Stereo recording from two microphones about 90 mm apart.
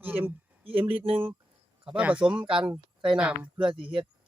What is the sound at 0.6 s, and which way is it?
Speech, 90° right.